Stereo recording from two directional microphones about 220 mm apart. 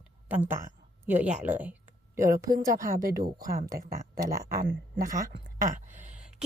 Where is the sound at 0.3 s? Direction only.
10° right (ahead or behind).